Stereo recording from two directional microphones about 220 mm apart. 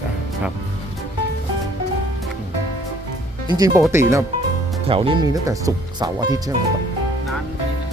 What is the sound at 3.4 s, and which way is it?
Speech, 15° right (ahead or behind).